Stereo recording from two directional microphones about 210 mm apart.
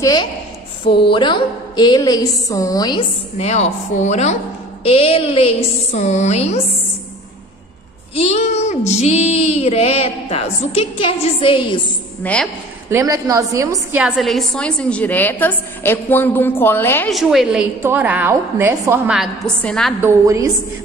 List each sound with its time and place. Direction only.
0.0 s child singing: 20° left (ahead or behind)
8.1 s child singing: 30° left (ahead or behind)
12.2 s a woman's voice: 5° left (ahead or behind)
12.9 s a woman's voice: 15° right (ahead or behind)
14.0 s a woman's voice: centre (ahead or behind)
17.1 s a woman's voice: centre (ahead or behind)
20.0 s a woman's voice: 15° right (ahead or behind)